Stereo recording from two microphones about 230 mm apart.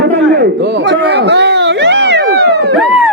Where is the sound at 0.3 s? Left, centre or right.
Right.